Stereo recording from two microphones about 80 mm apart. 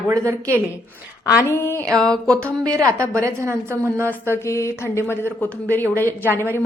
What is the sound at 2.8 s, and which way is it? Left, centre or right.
A woman's voice, right.